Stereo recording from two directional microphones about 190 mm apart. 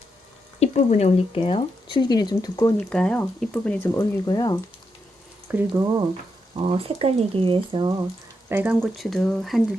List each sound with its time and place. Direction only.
0.6 s speech: 35° left (ahead or behind); by 2.7 s 20° left (ahead or behind)
2.9 s speech: 5° left (ahead or behind)
4.3 s speech: 20° left (ahead or behind)
5.5 s speech: 10° right (ahead or behind)
6.6 s speech: 30° right (ahead or behind)
8.4 s speech: 10° right (ahead or behind)
8.8 s speech: centre (ahead or behind)